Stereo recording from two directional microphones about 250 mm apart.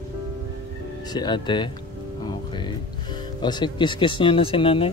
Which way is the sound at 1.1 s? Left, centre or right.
Centre.